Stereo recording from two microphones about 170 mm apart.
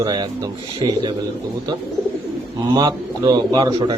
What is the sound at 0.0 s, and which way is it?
A man's voice, 25° right (ahead or behind).